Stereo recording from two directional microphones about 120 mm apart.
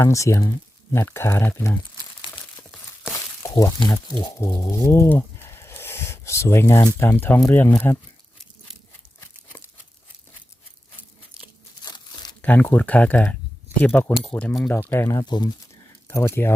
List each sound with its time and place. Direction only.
0.0 s speech: 25° left (ahead or behind)
3.4 s a sound: 30° left (ahead or behind)
3.8 s speech: 35° left (ahead or behind)
4.4 s a sound: 25° left (ahead or behind)
7.0 s speech: 20° left (ahead or behind)
11.8 s crumpling: 35° left (ahead or behind)
12.4 s speech: 15° left (ahead or behind)
15.3 s speech: 35° left (ahead or behind)
16.0 s speech: 20° left (ahead or behind)